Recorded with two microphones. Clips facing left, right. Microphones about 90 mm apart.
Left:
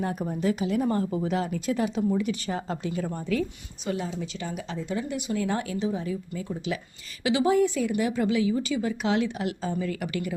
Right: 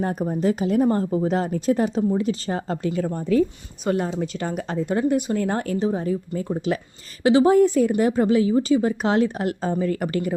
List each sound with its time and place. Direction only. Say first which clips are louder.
0.0 s speech: right 5 dB; 35° right (ahead or behind)
3.1 s speech: right 9 dB; 35° right (ahead or behind)
3.8 s speech: right 7 dB; 50° right (ahead or behind)